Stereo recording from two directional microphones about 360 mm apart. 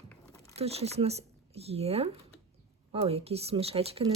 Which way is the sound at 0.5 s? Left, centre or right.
Centre.